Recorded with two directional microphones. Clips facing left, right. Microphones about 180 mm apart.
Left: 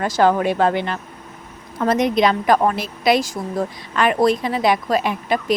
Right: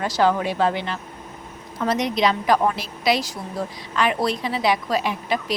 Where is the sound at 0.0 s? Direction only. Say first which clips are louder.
Left 4 dB; 50° left (ahead or behind).